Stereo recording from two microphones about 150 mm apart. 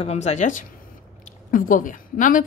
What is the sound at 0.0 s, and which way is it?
A woman's voice, 45° left (ahead or behind).